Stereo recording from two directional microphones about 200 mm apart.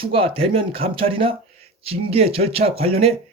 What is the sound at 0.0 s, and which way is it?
A man's voice, 25° right (ahead or behind).